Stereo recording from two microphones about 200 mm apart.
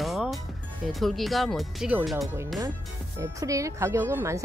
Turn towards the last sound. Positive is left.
turn(degrees=-15)  # may be behind; listen again after turning